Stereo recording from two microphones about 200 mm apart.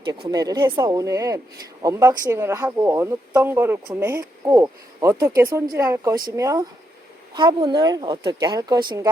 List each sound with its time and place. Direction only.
0.3 s speech: 20° right (ahead or behind)